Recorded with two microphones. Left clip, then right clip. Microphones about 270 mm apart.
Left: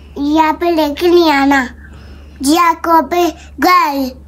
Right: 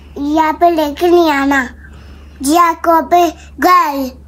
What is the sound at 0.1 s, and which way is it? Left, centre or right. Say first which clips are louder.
A child's voice: left 1 dB; centre.